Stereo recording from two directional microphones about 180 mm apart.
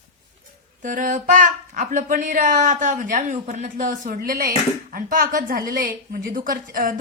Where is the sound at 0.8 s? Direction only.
45° right (ahead or behind).